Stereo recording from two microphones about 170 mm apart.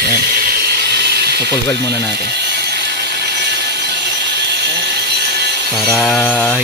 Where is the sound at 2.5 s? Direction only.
75° right (ahead or behind).